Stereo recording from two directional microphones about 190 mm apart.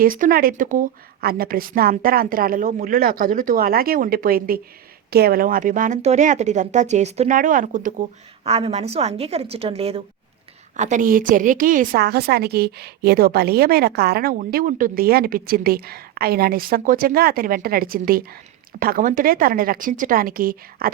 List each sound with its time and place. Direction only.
0.0 s a woman's voice: 45° right (ahead or behind)
8.4 s a woman's voice: 35° right (ahead or behind); by 20.9 s 50° right (ahead or behind)